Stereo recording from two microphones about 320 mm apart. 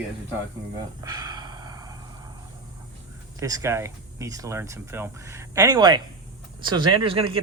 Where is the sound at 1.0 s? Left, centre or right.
Centre.